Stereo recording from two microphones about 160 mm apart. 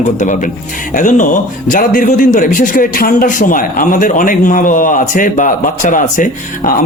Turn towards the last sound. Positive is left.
turn(degrees=55)  # may be behind; listen again after turning